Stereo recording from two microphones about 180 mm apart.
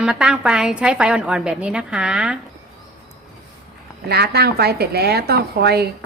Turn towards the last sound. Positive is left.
turn(degrees=-65)  # may be behind; listen again after turning